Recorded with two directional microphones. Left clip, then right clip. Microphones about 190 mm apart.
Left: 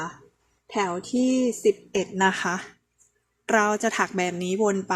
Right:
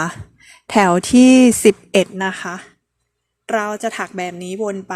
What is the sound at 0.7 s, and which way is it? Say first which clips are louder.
Speech: right 13 dB; 40° right (ahead or behind).